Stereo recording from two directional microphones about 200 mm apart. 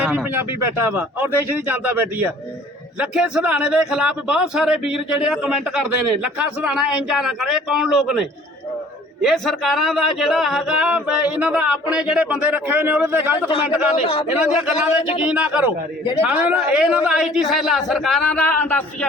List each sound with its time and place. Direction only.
0.0 s a man's voice: 5° right (ahead or behind)
13.9 s a man's voice: 25° left (ahead or behind)
14.3 s a man's voice: 5° right (ahead or behind)